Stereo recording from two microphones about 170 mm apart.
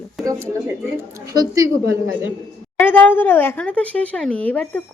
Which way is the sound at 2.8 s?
10° left (ahead or behind).